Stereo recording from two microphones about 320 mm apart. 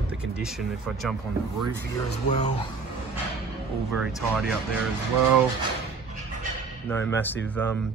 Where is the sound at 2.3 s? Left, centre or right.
Left.